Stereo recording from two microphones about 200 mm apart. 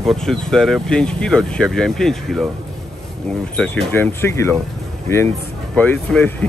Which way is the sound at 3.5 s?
5° left (ahead or behind).